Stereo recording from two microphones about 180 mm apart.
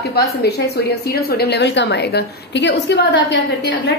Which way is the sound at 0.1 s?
65° left (ahead or behind).